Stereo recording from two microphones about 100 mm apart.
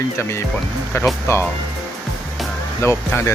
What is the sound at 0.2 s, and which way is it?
Speech, 25° left (ahead or behind).